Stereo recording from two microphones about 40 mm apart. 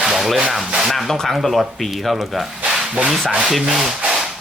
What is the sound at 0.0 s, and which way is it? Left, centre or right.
Rub, centre.